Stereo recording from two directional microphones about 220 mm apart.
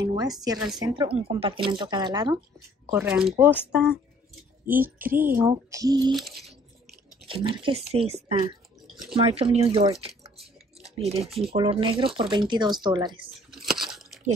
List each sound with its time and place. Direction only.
0.0 s speech: 15° right (ahead or behind)
2.9 s speech: 5° right (ahead or behind)
6.1 s a sound: centre (ahead or behind)
7.2 s speech: 25° right (ahead or behind)
10.8 s a sound: 30° right (ahead or behind)
11.2 s speech: centre (ahead or behind)
11.5 s speech: 20° right (ahead or behind)
13.5 s crunch: centre (ahead or behind)